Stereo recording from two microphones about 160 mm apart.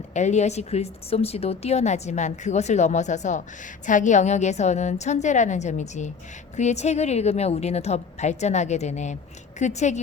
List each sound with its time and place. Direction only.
0.1 s speech: 45° left (ahead or behind)